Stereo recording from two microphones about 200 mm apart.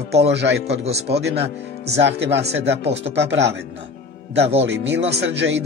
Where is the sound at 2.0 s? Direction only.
60° right (ahead or behind).